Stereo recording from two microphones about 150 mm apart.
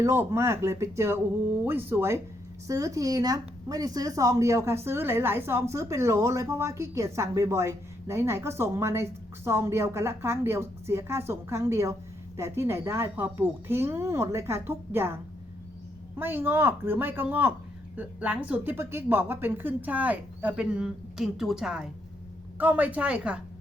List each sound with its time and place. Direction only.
0.0 s speech: 20° right (ahead or behind)